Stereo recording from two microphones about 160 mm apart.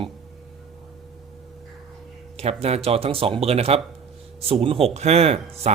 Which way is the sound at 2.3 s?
40° right (ahead or behind).